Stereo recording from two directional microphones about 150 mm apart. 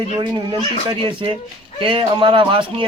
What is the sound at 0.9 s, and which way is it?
A man's voice, 35° right (ahead or behind).